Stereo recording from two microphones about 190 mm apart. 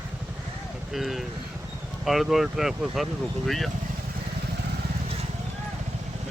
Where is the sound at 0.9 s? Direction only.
Centre (ahead or behind).